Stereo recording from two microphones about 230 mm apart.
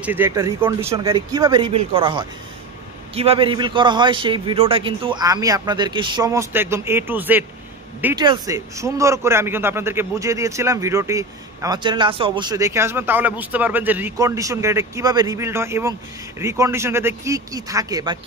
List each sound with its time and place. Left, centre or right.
0.0 s a man's voice: centre